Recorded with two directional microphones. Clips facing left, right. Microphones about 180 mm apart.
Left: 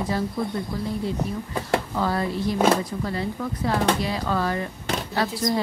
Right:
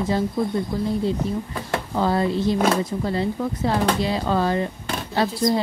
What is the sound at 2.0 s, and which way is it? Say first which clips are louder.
A woman's voice: right 4 dB; 25° right (ahead or behind).